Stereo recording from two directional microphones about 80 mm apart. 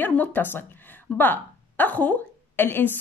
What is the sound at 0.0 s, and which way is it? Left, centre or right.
A woman's voice, left.